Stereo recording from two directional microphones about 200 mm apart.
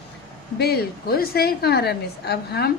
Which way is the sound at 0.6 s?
55° left (ahead or behind).